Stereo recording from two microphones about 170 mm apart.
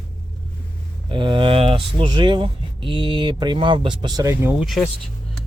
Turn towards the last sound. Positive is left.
turn(degrees=-10)  # may be behind; listen again after turning